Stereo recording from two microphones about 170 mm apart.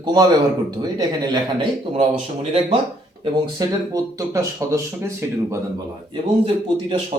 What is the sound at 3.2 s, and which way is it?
Speech, 20° right (ahead or behind).